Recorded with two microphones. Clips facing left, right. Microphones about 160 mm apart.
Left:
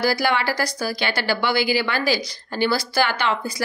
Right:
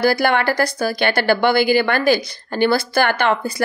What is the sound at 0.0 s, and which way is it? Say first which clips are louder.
A woman's voice: right 5 dB; 55° right (ahead or behind).